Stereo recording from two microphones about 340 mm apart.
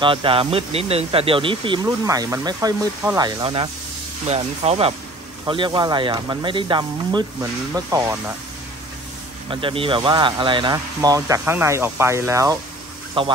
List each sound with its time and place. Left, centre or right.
0.0 s speech: centre
9.5 s speech: centre